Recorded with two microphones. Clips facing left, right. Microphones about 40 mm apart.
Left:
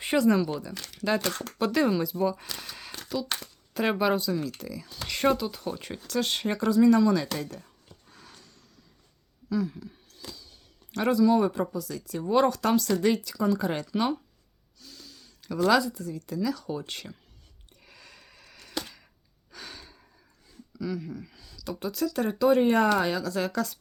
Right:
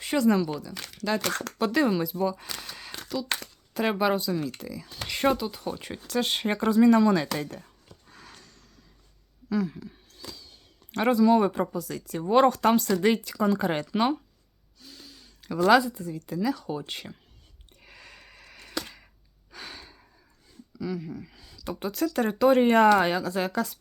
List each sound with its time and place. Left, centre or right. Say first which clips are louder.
0.2 s speech: right 1 dB; centre
1.2 s speech: right 2 dB; right
1.5 s speech: even; centre
6.5 s speech: right 1 dB; right
8.1 s a sound: right 3 dB; right
10.9 s speech: right 2 dB; right
13.3 s speech: right 2 dB; right
14.8 s speech: right 1 dB; right
17.8 s a sound: right 3 dB; right
19.5 s gasp: right 2 dB; centre
20.7 s speech: even; centre
21.4 s speech: right 1 dB; right
23.0 s speech: right 2 dB; right; by 23.6 s centre